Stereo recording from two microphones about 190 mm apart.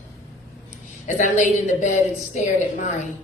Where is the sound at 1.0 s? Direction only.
40° left (ahead or behind).